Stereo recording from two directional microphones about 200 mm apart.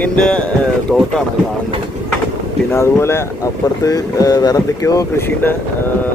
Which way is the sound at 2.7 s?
15° left (ahead or behind).